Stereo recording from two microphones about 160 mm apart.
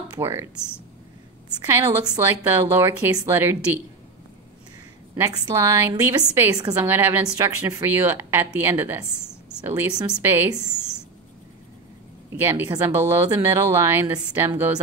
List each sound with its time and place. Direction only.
0.2 s a woman's voice: 15° right (ahead or behind)
1.7 s a woman's voice: 20° right (ahead or behind)
5.1 s a woman's voice: 15° right (ahead or behind)
12.3 s a woman's voice: 15° right (ahead or behind)